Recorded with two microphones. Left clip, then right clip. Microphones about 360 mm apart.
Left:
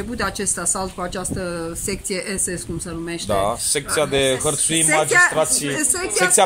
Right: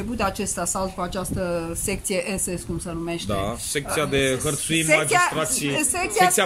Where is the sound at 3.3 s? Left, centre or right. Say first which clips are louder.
Left 10 dB; centre.